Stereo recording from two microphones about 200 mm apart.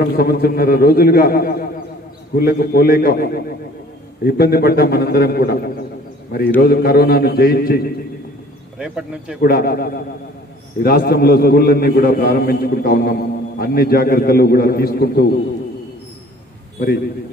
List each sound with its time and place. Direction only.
0.0 s a man's voice: 50° left (ahead or behind)
8.7 s speech: 5° right (ahead or behind)
9.4 s a man's voice: 50° left (ahead or behind)